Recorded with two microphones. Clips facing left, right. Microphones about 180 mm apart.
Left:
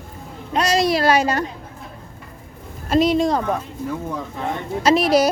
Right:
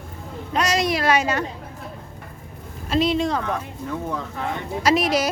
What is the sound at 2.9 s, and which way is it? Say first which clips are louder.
Speech: left 4 dB; 45° left (ahead or behind).